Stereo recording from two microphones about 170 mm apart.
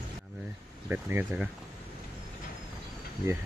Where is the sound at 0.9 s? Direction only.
10° right (ahead or behind).